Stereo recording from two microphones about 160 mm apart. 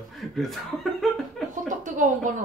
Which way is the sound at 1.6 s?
50° right (ahead or behind).